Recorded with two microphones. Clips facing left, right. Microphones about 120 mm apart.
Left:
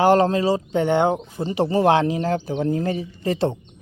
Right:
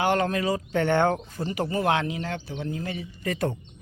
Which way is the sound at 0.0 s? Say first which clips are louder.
Left 7 dB; 35° left (ahead or behind).